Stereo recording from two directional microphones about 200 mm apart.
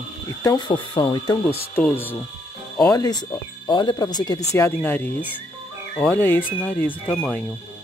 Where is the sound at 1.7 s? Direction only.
10° left (ahead or behind).